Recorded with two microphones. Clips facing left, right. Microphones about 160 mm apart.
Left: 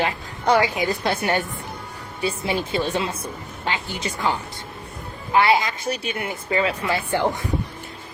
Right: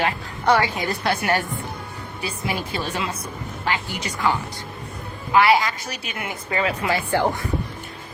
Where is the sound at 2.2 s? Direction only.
25° left (ahead or behind).